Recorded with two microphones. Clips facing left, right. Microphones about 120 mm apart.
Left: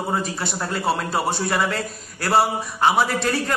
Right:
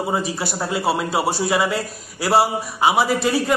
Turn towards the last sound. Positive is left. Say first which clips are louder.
# right 2 dB
turn(degrees=-10)  # may be behind; listen again after turning